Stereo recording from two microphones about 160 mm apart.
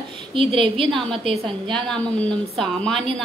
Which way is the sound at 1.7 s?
5° left (ahead or behind).